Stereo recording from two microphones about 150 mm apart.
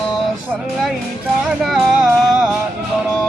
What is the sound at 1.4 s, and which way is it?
Music, centre (ahead or behind).